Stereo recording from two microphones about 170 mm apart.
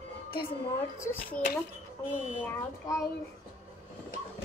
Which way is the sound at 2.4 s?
15° left (ahead or behind).